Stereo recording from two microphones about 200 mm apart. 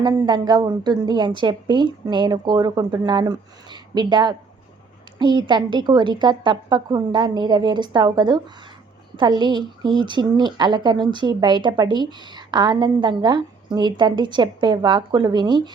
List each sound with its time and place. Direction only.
0.0 s a woman's voice: 20° right (ahead or behind)